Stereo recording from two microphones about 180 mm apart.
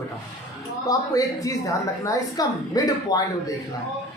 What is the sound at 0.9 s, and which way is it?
A woman's voice, 20° left (ahead or behind).